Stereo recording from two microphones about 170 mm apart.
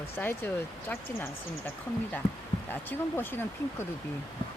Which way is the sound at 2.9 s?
10° left (ahead or behind).